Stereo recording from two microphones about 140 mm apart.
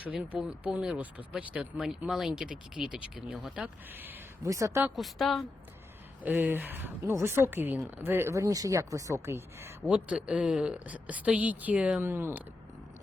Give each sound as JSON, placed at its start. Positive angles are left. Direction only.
{"t": 0.0, "sound": "speech", "side_deg": -10}
{"t": 4.4, "sound": "speech", "side_deg": -20}
{"t": 4.9, "sound": "a woman's voice", "side_deg": 0}
{"t": 6.2, "sound": "speech", "side_deg": -15}
{"t": 9.9, "sound": "speech", "side_deg": -5}